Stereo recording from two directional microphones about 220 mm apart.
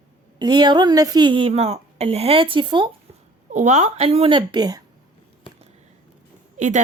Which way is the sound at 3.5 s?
35° right (ahead or behind).